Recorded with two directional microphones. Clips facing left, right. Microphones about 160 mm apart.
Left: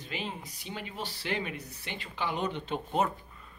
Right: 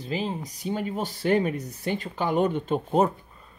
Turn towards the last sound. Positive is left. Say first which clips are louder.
# right 7 dB
turn(degrees=-40)  # may be behind; listen again after turning